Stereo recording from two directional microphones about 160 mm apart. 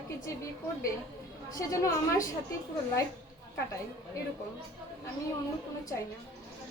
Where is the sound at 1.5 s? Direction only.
20° left (ahead or behind).